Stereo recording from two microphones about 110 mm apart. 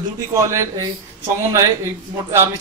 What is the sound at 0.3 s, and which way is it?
Speech, 30° right (ahead or behind).